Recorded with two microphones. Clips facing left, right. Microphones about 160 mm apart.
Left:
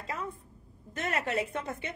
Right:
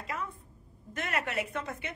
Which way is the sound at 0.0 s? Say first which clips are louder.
Even; 30° left (ahead or behind).